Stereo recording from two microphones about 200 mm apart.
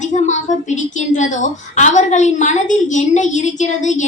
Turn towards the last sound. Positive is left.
turn(degrees=35)  # may be behind; listen again after turning